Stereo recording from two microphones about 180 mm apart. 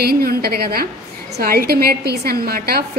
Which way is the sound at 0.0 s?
60° right (ahead or behind).